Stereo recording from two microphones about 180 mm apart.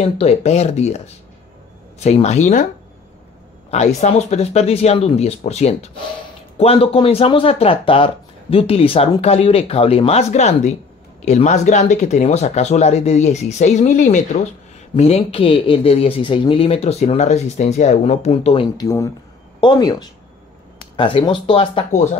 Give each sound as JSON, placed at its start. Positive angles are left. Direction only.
{"t": 0.0, "sound": "speech", "side_deg": 35}
{"t": 3.7, "sound": "speech", "side_deg": 40}
{"t": 18.8, "sound": "speech", "side_deg": 20}